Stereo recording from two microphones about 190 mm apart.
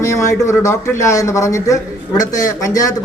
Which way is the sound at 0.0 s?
15° left (ahead or behind).